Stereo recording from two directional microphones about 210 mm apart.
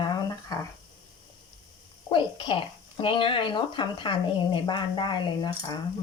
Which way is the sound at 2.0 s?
25° left (ahead or behind).